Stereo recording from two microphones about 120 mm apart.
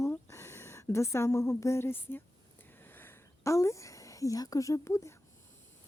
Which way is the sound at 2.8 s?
15° left (ahead or behind).